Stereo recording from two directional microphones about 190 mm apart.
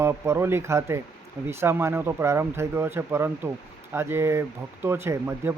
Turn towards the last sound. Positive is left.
turn(degrees=-15)  # may be behind; listen again after turning